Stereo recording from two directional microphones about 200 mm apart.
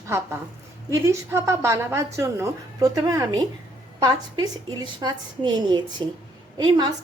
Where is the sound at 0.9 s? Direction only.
15° right (ahead or behind).